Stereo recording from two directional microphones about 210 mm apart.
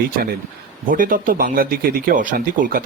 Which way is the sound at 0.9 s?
40° right (ahead or behind).